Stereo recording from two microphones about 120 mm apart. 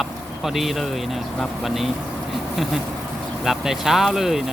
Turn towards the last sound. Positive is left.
turn(degrees=-5)  # may be behind; listen again after turning